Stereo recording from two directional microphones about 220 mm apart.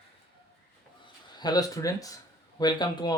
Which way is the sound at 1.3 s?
20° left (ahead or behind).